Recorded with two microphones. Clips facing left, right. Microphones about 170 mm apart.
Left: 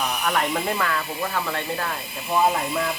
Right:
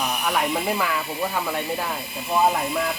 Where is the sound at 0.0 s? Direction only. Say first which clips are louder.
Even; 5° right (ahead or behind).